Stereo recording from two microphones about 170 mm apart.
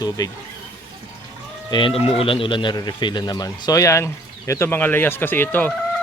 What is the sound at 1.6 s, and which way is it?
A man's voice, 30° left (ahead or behind).